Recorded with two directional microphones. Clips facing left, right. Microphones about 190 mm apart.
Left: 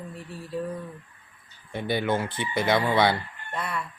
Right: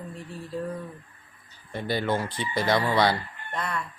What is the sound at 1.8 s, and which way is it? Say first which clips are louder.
Speech: left 1 dB; 20° left (ahead or behind).